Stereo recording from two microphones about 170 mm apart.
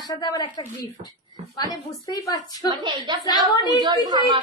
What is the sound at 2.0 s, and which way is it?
Speech, 20° left (ahead or behind).